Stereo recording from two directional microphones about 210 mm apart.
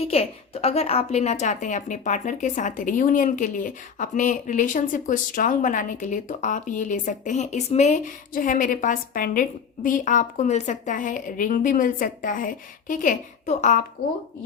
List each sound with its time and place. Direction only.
0.0 s a woman's voice: 30° left (ahead or behind)